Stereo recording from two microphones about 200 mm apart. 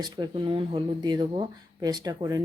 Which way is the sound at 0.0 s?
20° right (ahead or behind).